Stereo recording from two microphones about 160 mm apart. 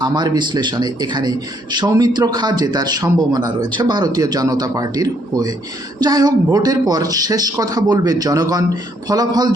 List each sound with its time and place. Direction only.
0.0 s a man's voice: 25° right (ahead or behind)